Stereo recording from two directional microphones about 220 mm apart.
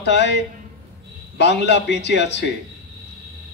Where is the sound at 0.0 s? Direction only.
50° left (ahead or behind).